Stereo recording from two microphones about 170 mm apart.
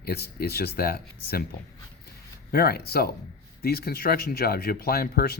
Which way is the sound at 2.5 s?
65° left (ahead or behind).